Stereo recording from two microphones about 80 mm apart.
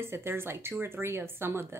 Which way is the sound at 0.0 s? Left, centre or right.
Right.